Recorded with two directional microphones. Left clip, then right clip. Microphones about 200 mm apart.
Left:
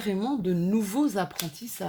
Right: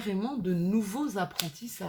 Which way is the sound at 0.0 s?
35° left (ahead or behind).